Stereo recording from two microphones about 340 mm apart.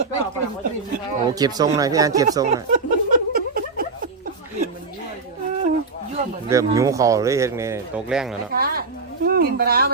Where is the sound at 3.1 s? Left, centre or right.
Right.